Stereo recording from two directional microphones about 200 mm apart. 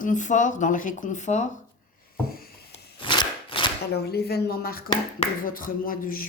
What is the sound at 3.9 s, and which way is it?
Speech, 50° left (ahead or behind).